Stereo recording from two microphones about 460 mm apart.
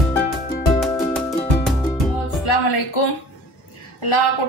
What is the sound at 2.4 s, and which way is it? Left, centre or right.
Music, left.